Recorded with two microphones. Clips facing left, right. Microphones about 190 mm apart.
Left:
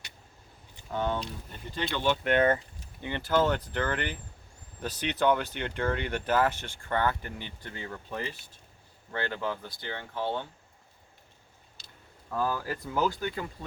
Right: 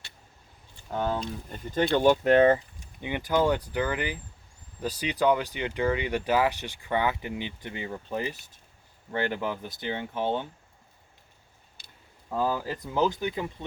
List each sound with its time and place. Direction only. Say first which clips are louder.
0.9 s speech: right 1 dB; 35° right (ahead or behind)
1.7 s speech: right 8 dB; 45° right (ahead or behind)
3.0 s speech: right 1 dB; 15° right (ahead or behind)
12.3 s speech: right 2 dB; 20° right (ahead or behind)